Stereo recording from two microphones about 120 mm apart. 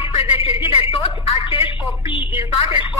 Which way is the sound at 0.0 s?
50° left (ahead or behind).